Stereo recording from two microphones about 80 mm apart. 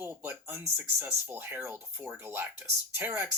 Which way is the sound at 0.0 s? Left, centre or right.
Right.